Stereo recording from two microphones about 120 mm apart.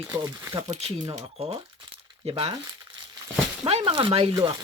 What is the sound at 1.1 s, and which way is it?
Speech, 55° right (ahead or behind).